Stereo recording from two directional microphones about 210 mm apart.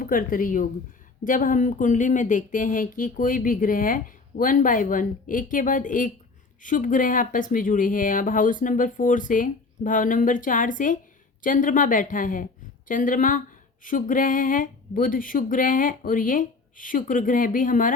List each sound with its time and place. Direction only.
0.0 s speech: 40° left (ahead or behind)